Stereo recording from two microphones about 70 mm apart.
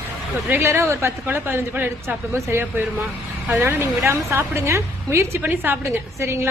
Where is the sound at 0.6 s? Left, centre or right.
Right.